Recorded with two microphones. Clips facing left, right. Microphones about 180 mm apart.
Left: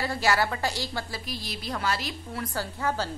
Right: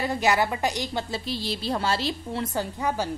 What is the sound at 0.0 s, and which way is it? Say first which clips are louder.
A woman's voice: right 2 dB; 20° right (ahead or behind).